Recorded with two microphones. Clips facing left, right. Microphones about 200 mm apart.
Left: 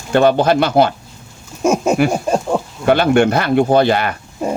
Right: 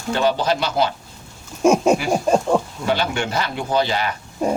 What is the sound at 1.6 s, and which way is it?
Speech, centre (ahead or behind).